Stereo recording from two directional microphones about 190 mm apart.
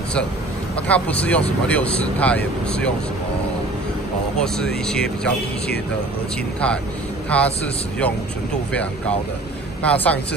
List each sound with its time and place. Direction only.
0.7 s speech: 5° left (ahead or behind)
4.4 s speech: 5° left (ahead or behind)
7.2 s speech: 5° left (ahead or behind)
9.8 s speech: 10° left (ahead or behind)